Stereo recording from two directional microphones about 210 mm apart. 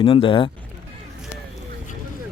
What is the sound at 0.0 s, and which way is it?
Speech, 25° left (ahead or behind).